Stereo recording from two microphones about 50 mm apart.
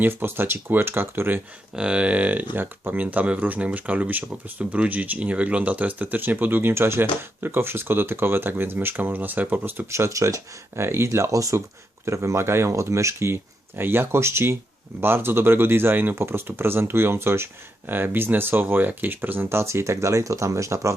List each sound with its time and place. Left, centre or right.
0.0 s speech: right
1.7 s speech: centre; by 9.8 s right
9.8 s speech: right
12.0 s speech: right
17.9 s speech: right